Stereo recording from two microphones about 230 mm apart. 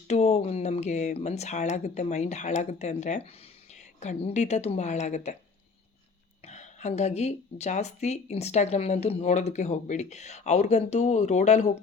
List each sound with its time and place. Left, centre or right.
0.1 s a woman's voice: left
6.4 s a woman's voice: left